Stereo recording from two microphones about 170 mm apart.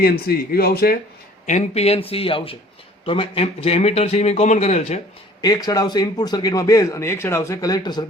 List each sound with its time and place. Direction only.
0.0 s speech: 65° left (ahead or behind)
1.5 s a man's voice: 40° left (ahead or behind)
5.4 s a man's voice: 20° left (ahead or behind)